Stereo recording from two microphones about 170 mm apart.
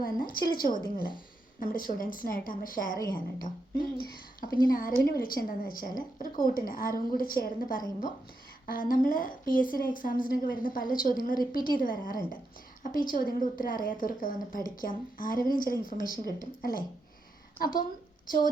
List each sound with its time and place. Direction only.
0.0 s a woman's voice: 55° left (ahead or behind)
3.0 s a woman's voice: 20° left (ahead or behind)
3.4 s a woman's voice: 55° left (ahead or behind)